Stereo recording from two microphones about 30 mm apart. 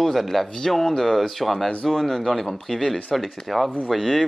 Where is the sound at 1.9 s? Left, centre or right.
Centre.